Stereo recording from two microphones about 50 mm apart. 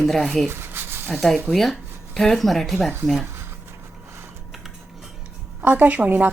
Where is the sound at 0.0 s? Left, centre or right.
Centre.